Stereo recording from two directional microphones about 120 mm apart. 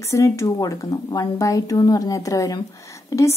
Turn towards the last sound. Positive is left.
turn(degrees=25)  # may be behind; listen again after turning